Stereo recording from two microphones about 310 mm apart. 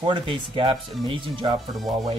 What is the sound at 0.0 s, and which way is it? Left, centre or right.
Speech, centre.